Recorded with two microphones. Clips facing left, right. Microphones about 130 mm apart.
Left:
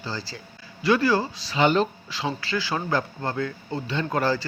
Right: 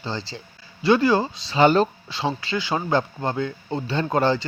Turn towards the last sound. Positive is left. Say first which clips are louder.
# right 3 dB
turn(degrees=-25)  # may be behind; listen again after turning